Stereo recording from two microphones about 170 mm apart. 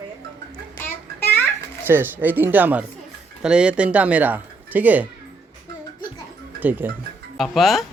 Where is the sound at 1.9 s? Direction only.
10° right (ahead or behind).